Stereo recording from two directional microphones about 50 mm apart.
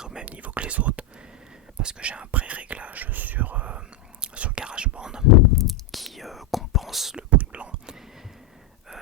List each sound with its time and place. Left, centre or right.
0.0 s whispering: centre
0.3 s whispering: right
5.5 s whispering: centre
7.2 s whispering: right